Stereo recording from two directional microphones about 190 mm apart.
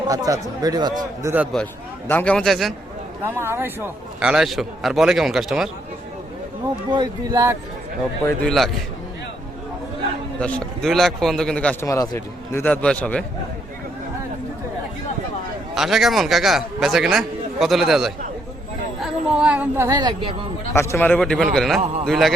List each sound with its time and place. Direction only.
0.1 s speech: 20° right (ahead or behind)
2.0 s a man's voice: 10° left (ahead or behind)
3.2 s a man's voice: 15° right (ahead or behind)
6.9 s speech: 20° right (ahead or behind)
8.4 s a man's voice: centre (ahead or behind)
10.4 s a man's voice: 5° left (ahead or behind)
15.7 s a man's voice: centre (ahead or behind); by 20.3 s 20° right (ahead or behind)
20.7 s a man's voice: 15° left (ahead or behind)